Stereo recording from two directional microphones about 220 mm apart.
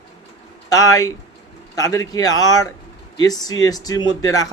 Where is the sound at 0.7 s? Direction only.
15° left (ahead or behind).